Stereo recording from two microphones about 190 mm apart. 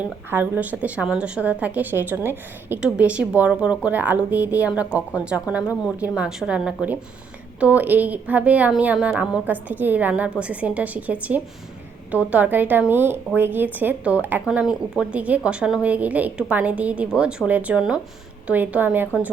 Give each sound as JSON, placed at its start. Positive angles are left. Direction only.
{"t": 0.0, "sound": "a woman's voice", "side_deg": -10}